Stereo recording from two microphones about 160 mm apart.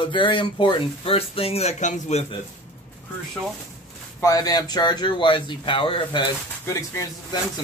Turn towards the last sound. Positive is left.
turn(degrees=20)  # may be behind; listen again after turning